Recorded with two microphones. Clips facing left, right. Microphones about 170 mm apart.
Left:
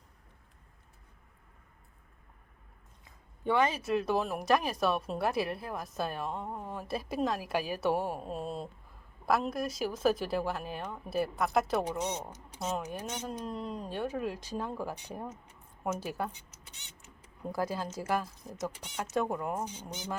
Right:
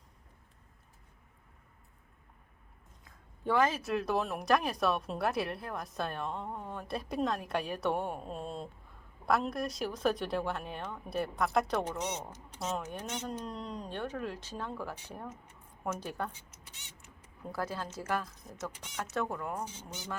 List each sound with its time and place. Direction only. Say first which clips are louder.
3.0 s speech: left 2 dB; centre (ahead or behind)
11.9 s speech: left 2 dB; 15° left (ahead or behind)
13.2 s speech: left 2 dB; 5° left (ahead or behind)
17.4 s speech: left 4 dB; 15° left (ahead or behind)
18.6 s speech: left 3 dB; 20° left (ahead or behind)